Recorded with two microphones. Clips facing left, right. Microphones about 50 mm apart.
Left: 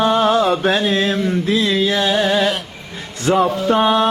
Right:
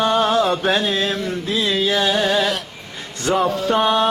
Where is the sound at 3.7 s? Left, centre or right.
Centre.